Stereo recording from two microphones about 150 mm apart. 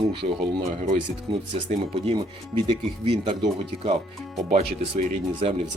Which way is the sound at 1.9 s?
35° right (ahead or behind).